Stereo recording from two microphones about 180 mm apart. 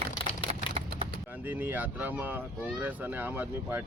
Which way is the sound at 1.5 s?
10° right (ahead or behind).